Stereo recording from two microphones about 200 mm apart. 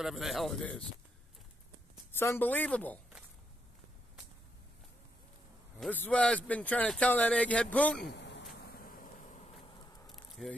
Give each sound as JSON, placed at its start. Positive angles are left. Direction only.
{"t": 0.0, "sound": "speech", "side_deg": 0}
{"t": 2.1, "sound": "speech", "side_deg": 10}
{"t": 5.8, "sound": "speech", "side_deg": 10}
{"t": 8.1, "sound": "a sound", "side_deg": 60}
{"t": 8.5, "sound": "vehicle", "side_deg": 50}
{"t": 10.0, "sound": "a sound", "side_deg": 0}